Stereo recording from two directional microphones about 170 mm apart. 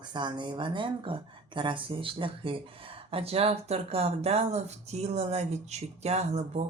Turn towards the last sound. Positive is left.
turn(degrees=-40)  # may be behind; listen again after turning